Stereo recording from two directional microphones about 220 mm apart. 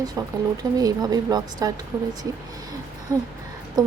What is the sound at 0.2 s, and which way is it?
A woman's voice, 15° right (ahead or behind).